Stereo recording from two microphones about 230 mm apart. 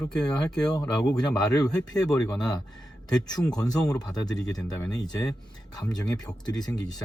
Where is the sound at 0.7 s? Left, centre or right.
Centre.